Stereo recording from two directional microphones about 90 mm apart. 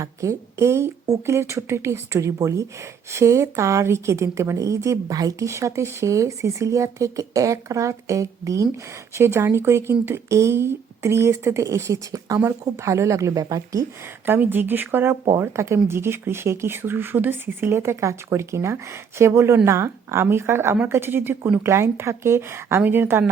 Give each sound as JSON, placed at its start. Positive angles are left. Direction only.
{"t": 0.0, "sound": "a woman's voice", "side_deg": -35}
{"t": 14.3, "sound": "speech", "side_deg": -20}